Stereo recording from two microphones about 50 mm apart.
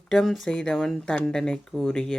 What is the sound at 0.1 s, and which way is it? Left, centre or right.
Speech, centre.